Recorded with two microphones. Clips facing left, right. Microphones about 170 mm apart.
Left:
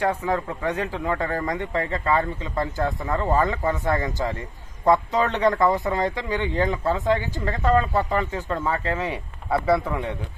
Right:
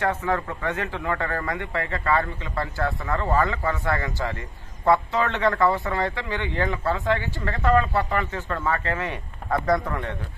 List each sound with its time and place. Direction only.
0.0 s speech: 15° left (ahead or behind)